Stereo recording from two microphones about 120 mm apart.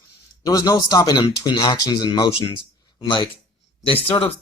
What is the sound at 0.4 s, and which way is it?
Speech, 30° left (ahead or behind).